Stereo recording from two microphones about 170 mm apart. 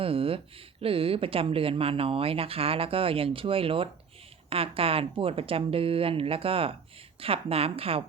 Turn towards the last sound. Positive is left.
turn(degrees=-35)  # may be behind; listen again after turning